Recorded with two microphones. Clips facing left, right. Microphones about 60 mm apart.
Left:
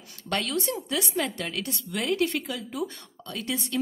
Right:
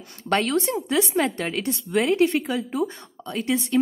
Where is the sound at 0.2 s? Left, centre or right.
Right.